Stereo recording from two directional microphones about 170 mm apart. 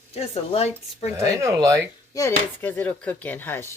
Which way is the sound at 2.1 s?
15° left (ahead or behind).